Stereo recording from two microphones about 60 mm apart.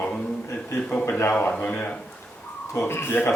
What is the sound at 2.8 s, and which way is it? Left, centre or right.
Speech, left.